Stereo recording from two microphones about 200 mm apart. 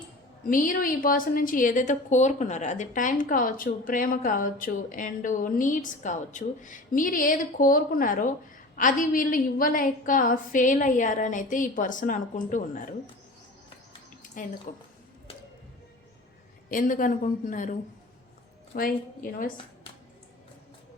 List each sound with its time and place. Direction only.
0.5 s a woman's voice: 45° left (ahead or behind)
14.7 s a woman's voice: 45° left (ahead or behind)
16.6 s a woman's voice: 40° left (ahead or behind)